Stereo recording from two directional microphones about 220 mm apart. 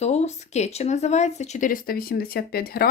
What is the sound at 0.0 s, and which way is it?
Speech, 30° left (ahead or behind).